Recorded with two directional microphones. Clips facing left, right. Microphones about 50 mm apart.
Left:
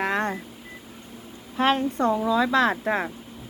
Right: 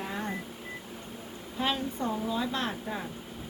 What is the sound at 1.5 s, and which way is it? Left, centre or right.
Speech, left.